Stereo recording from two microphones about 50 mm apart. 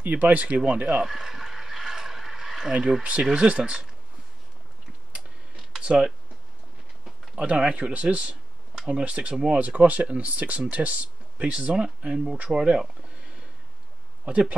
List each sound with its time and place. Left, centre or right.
0.0 s speech: right
1.0 s a sound: centre
3.2 s speech: centre
5.8 s speech: centre
7.3 s speech: right
8.7 s a sound: centre
9.0 s speech: right